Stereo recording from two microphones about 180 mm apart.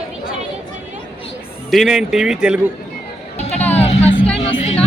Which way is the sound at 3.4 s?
35° left (ahead or behind).